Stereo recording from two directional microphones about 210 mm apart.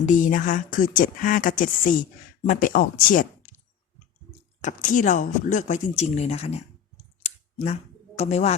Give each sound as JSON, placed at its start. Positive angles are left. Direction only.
{"t": 0.0, "sound": "speech", "side_deg": 40}
{"t": 4.6, "sound": "speech", "side_deg": 40}
{"t": 7.2, "sound": "a sound", "side_deg": 30}